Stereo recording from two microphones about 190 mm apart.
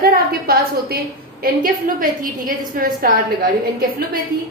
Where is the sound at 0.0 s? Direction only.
55° right (ahead or behind).